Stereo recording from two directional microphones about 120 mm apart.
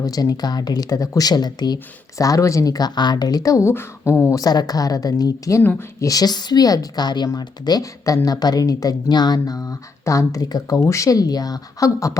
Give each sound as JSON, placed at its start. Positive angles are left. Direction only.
{"t": 0.0, "sound": "speech", "side_deg": 30}
{"t": 4.4, "sound": "speech", "side_deg": 35}